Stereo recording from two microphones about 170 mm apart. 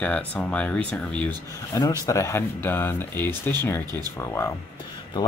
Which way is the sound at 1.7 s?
20° left (ahead or behind).